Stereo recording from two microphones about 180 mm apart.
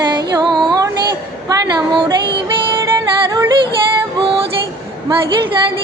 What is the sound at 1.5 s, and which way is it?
Music, 20° right (ahead or behind).